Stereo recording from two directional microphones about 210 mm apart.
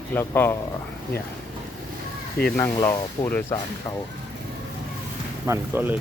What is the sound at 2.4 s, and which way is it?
Speech, 10° left (ahead or behind).